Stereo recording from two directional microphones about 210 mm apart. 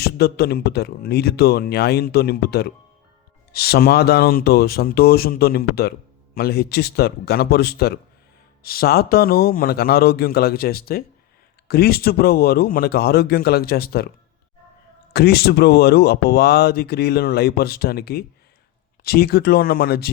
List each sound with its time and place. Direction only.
0.0 s speech: 50° left (ahead or behind)
15.1 s speech: 50° left (ahead or behind)